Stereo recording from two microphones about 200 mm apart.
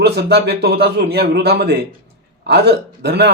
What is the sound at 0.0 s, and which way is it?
A man's voice, 55° right (ahead or behind).